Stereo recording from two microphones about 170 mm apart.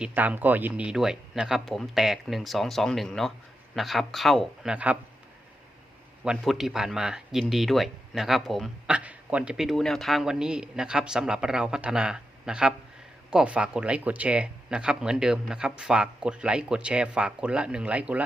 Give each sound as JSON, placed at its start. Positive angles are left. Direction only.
{"t": 0.0, "sound": "speech", "side_deg": -10}
{"t": 6.2, "sound": "speech", "side_deg": 0}